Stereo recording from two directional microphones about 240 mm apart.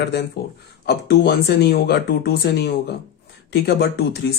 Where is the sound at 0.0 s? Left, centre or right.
Left.